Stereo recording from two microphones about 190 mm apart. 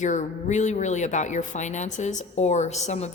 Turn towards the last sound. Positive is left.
turn(degrees=35)  # may be behind; listen again after turning